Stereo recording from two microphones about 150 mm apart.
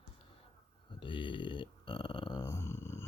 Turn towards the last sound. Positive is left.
turn(degrees=15)  # may be behind; listen again after turning